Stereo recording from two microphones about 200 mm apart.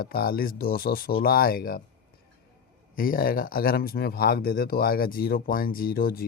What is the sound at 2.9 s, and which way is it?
Speech, 45° left (ahead or behind).